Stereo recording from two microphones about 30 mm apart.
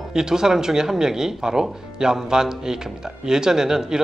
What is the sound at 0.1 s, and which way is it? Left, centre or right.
Speech, right.